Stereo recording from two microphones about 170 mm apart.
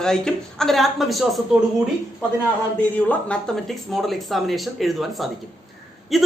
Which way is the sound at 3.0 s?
5° left (ahead or behind).